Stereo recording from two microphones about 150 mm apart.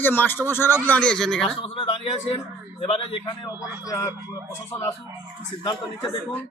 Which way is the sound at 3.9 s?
20° left (ahead or behind).